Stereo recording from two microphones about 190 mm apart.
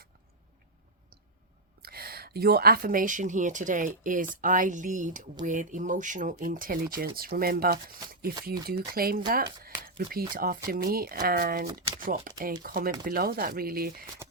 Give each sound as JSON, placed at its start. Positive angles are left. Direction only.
{"t": 1.8, "sound": "speech", "side_deg": -55}